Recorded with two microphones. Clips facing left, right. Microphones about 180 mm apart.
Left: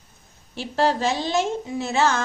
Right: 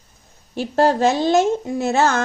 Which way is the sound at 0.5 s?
45° right (ahead or behind).